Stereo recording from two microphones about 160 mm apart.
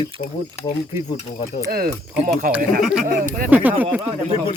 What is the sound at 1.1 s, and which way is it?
Speech, 45° left (ahead or behind).